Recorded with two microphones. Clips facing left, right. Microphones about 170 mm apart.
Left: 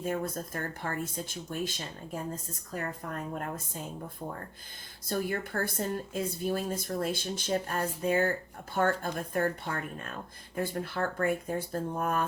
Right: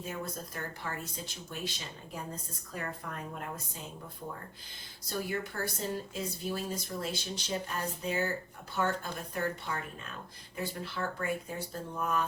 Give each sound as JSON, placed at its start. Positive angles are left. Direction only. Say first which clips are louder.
{"t": 0.0, "sound": "a woman's voice", "louder": "left 6 dB", "side_deg": 50}
{"t": 2.7, "sound": "a woman's voice", "louder": "left 4 dB", "side_deg": 45}
{"t": 5.0, "sound": "a woman's voice", "louder": "left 3 dB", "side_deg": 50}